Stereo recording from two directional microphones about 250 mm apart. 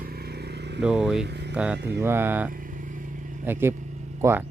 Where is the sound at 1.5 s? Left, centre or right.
Centre.